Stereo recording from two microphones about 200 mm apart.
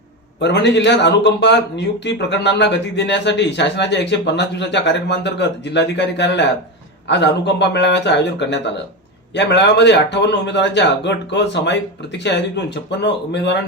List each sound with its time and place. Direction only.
0.3 s a man's voice: 60° left (ahead or behind)